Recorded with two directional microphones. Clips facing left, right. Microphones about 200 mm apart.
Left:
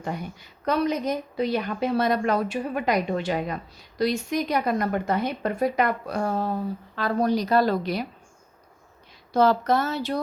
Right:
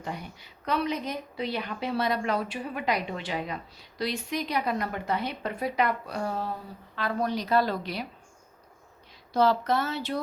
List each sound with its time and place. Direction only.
0.0 s a woman's voice: 50° left (ahead or behind)
6.9 s a woman's voice: 40° left (ahead or behind)
9.3 s a woman's voice: 50° left (ahead or behind)